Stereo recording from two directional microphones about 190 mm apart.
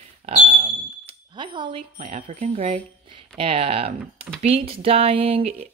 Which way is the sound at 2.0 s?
35° right (ahead or behind).